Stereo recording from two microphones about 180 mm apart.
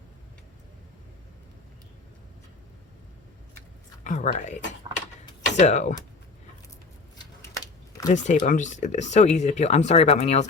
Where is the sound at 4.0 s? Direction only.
40° left (ahead or behind).